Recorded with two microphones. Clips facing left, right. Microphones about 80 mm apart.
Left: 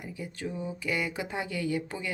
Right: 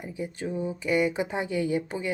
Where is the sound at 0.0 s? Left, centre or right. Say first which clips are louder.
Right 4 dB; right.